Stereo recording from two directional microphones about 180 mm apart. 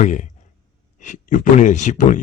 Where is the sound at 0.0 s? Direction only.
40° left (ahead or behind).